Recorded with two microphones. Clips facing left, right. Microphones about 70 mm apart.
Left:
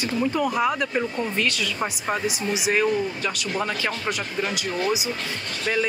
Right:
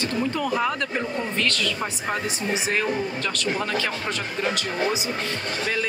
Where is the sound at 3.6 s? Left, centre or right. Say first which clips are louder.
Even; centre.